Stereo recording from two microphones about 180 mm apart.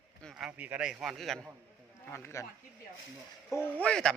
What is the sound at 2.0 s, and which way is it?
Speech, 15° left (ahead or behind).